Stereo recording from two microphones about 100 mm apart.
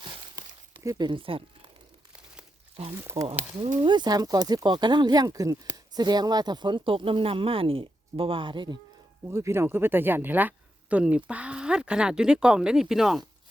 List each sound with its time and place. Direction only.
0.0 s a sound: 50° right (ahead or behind)
0.9 s speech: 45° right (ahead or behind)
1.2 s speech: 65° right (ahead or behind)
3.0 s speech: 25° right (ahead or behind)
3.6 s speech: 50° right (ahead or behind)
9.2 s speech: 30° right (ahead or behind); by 13.2 s 5° right (ahead or behind)